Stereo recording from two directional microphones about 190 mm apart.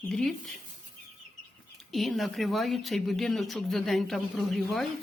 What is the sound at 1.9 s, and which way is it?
A woman's voice, centre (ahead or behind).